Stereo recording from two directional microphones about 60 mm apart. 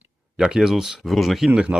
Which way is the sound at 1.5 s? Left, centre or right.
Centre.